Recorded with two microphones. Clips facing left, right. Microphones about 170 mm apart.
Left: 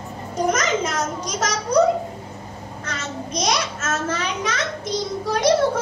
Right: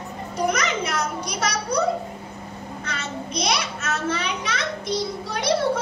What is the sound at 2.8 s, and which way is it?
A child's voice, 60° right (ahead or behind).